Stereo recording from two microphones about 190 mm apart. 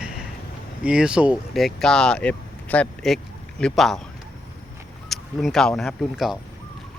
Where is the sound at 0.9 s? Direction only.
5° right (ahead or behind).